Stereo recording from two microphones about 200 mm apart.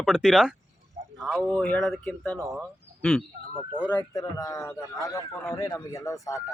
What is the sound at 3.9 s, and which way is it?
Speech, 15° left (ahead or behind).